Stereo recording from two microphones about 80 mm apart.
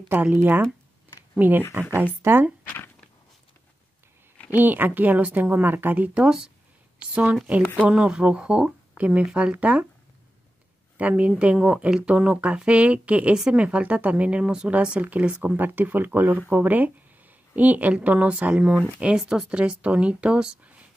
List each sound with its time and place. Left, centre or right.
0.1 s a woman's voice: right
2.2 s speech: right
4.5 s a woman's voice: right
11.0 s speech: centre